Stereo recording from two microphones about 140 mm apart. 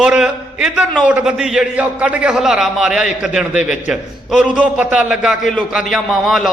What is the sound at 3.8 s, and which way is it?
A man's voice, 5° right (ahead or behind).